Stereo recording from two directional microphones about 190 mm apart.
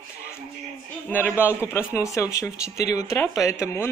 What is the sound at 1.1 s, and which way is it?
Speech, 10° left (ahead or behind).